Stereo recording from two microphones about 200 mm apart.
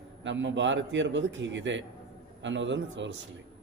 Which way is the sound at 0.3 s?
65° right (ahead or behind).